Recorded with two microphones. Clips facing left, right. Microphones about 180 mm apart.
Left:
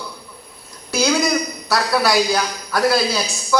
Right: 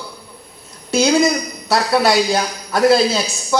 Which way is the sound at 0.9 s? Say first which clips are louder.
Right 4 dB; 25° right (ahead or behind).